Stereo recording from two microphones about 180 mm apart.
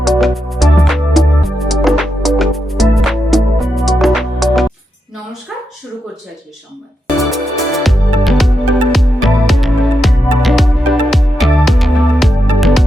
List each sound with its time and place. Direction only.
0.0 s music: centre (ahead or behind)
7.2 s music: centre (ahead or behind)